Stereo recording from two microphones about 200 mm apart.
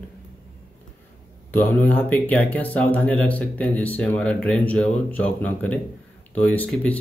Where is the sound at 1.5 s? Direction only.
10° left (ahead or behind).